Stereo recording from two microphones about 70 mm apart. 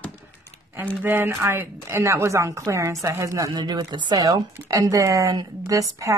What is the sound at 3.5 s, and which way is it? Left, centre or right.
Speech, right.